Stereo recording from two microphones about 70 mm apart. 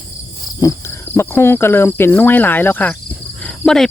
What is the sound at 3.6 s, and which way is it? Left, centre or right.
Speech, centre.